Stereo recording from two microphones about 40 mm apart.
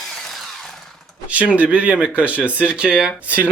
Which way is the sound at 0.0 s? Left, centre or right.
Centre.